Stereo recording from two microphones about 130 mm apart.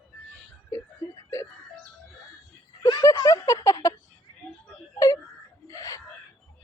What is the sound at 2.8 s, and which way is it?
Speech, 25° left (ahead or behind).